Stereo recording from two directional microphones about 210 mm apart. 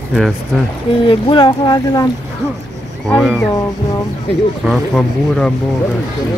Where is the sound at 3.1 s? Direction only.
5° left (ahead or behind).